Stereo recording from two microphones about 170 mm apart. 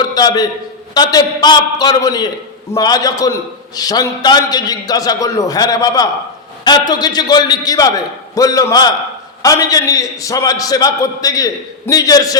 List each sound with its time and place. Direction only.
0.1 s a man's voice: 25° left (ahead or behind)